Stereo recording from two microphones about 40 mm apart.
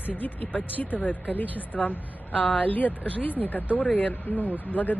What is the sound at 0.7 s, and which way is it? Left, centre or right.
A woman's voice, left.